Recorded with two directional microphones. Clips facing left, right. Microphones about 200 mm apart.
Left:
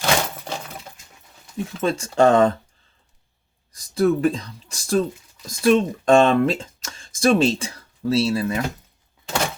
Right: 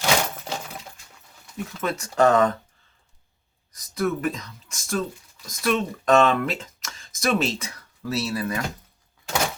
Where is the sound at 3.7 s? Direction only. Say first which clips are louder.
Left 6 dB; 30° left (ahead or behind).